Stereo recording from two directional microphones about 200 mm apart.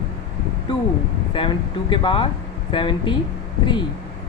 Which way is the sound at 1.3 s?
25° left (ahead or behind).